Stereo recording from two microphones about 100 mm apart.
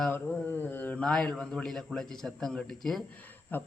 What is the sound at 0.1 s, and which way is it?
Mantra, 20° left (ahead or behind).